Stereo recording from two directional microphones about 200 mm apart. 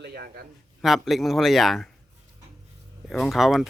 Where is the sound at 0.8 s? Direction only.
Centre (ahead or behind).